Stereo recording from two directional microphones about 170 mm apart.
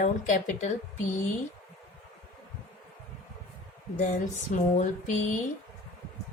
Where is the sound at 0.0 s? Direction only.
45° left (ahead or behind).